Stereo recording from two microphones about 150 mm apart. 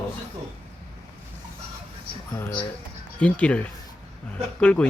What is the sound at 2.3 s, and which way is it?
Speech, 25° left (ahead or behind).